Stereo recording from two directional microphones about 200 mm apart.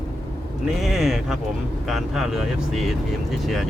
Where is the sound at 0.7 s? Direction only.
Centre (ahead or behind).